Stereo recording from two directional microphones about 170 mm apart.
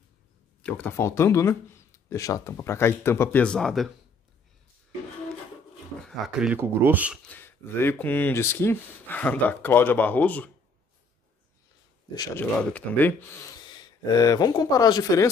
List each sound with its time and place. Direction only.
0.6 s speech: 10° left (ahead or behind)
6.0 s speech: centre (ahead or behind)
7.2 s speech: 10° left (ahead or behind)
12.4 s speech: 10° left (ahead or behind)
13.7 s speech: 25° left (ahead or behind)